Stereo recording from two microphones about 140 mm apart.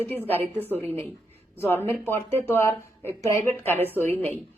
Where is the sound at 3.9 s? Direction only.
15° left (ahead or behind).